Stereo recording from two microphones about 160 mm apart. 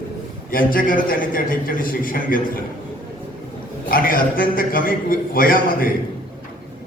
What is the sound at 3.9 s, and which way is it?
A man's voice, 60° left (ahead or behind).